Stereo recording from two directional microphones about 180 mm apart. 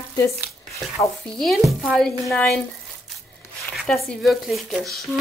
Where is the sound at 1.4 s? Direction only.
Centre (ahead or behind).